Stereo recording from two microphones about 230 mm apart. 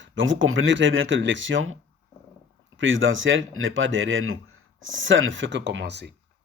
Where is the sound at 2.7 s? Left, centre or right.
Right.